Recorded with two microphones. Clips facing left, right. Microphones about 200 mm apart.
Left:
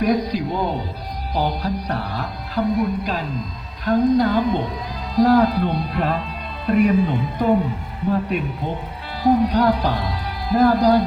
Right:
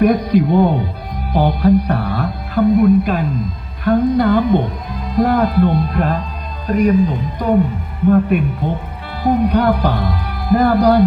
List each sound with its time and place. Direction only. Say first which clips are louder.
0.0 s music: right 7 dB; 55° right (ahead or behind)
5.1 s speech: right 1 dB; 55° right (ahead or behind)
8.3 s speech: right 7 dB; 55° right (ahead or behind)
9.2 s music: right 2 dB; 60° right (ahead or behind)